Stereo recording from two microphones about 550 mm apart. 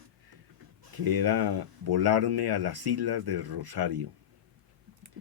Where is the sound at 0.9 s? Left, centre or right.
Right.